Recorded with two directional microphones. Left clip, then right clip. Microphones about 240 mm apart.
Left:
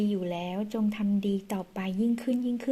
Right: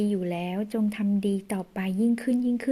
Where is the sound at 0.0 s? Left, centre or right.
Right.